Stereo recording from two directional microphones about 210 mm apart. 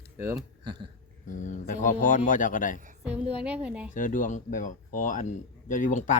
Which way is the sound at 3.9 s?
40° left (ahead or behind).